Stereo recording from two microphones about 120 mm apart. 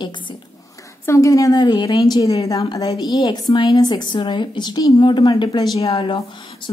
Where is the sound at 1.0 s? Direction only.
25° left (ahead or behind); by 5.7 s 40° left (ahead or behind).